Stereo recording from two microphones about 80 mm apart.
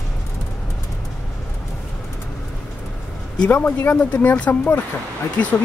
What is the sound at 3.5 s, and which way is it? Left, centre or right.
Speech, left.